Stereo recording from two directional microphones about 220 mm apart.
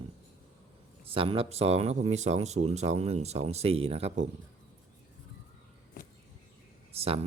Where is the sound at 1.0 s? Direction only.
25° right (ahead or behind).